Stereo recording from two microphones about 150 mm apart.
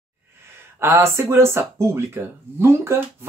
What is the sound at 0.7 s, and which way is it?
Speech, 15° right (ahead or behind).